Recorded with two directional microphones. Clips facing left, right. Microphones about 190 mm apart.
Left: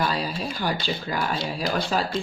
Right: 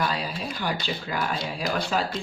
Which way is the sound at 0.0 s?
35° left (ahead or behind).